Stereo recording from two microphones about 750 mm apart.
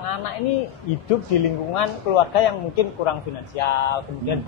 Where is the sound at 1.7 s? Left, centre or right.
Left.